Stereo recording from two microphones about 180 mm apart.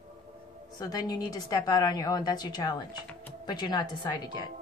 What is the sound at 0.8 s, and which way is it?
A woman's voice, 20° left (ahead or behind).